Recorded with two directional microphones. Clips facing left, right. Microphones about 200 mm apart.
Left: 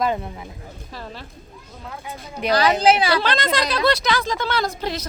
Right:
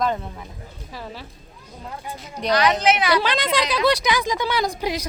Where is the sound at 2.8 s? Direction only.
30° left (ahead or behind).